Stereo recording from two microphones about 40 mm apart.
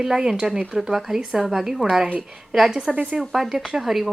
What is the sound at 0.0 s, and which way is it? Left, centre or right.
A woman's voice, centre.